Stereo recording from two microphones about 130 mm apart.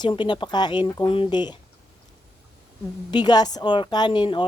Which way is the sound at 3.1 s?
30° left (ahead or behind).